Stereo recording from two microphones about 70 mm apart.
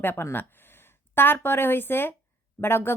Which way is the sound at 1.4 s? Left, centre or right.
Left.